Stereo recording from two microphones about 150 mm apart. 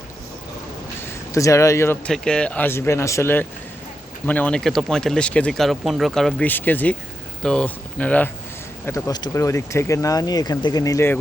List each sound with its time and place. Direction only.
1.0 s speech: 20° left (ahead or behind)
2.0 s speech: 5° left (ahead or behind); by 11.1 s 20° left (ahead or behind)